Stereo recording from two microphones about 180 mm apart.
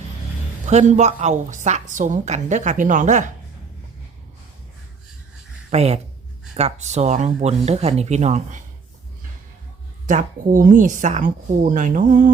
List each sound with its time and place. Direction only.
0.6 s a woman's voice: 40° right (ahead or behind)
5.7 s a woman's voice: 35° right (ahead or behind)
10.1 s a woman's voice: 45° right (ahead or behind)